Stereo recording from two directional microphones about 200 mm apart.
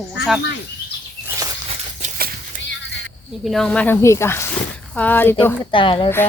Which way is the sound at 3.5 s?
5° left (ahead or behind).